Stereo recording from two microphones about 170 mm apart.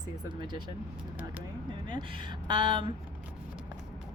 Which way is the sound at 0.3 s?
25° right (ahead or behind).